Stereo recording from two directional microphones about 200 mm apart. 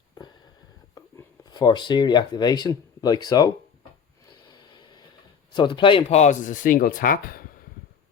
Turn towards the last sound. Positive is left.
turn(degrees=45)  # may be behind; listen again after turning